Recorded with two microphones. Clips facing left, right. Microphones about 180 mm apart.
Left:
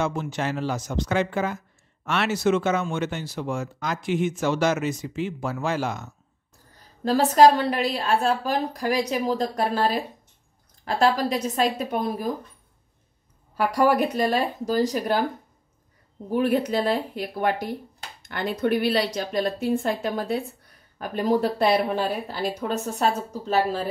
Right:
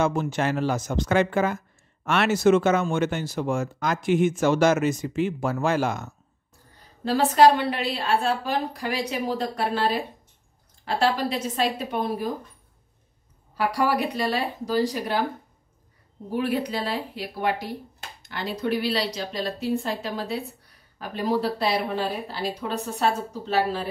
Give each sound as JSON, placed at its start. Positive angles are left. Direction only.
{"t": 0.0, "sound": "speech", "side_deg": -50}
{"t": 7.1, "sound": "speech", "side_deg": 40}
{"t": 13.6, "sound": "speech", "side_deg": 45}
{"t": 16.3, "sound": "speech", "side_deg": 45}